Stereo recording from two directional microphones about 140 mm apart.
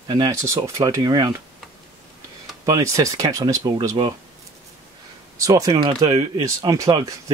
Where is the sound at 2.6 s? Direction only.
25° right (ahead or behind).